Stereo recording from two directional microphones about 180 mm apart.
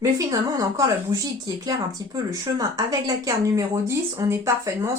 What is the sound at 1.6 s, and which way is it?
Speech, 20° right (ahead or behind).